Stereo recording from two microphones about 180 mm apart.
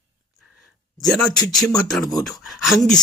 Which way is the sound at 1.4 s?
20° left (ahead or behind).